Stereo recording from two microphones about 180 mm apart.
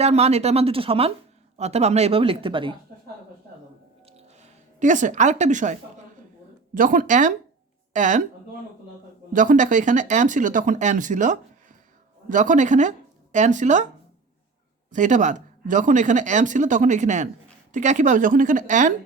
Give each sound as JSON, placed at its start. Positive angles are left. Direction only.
{"t": 0.0, "sound": "speech", "side_deg": -35}
{"t": 4.0, "sound": "music", "side_deg": -40}
{"t": 6.7, "sound": "speech", "side_deg": -50}
{"t": 9.3, "sound": "speech", "side_deg": -45}
{"t": 14.8, "sound": "speech", "side_deg": -45}